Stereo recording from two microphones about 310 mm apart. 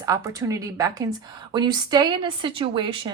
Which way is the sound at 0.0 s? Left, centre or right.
Centre.